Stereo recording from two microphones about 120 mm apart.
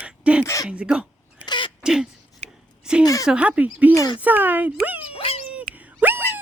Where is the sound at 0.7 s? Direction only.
10° right (ahead or behind).